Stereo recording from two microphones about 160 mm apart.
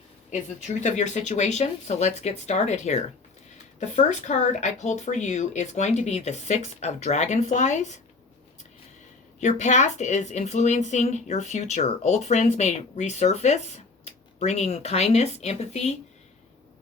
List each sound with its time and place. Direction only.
0.8 s a woman's voice: 45° left (ahead or behind)
9.4 s a woman's voice: 45° left (ahead or behind)